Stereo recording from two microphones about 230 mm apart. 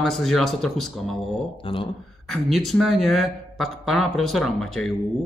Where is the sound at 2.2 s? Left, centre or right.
Centre.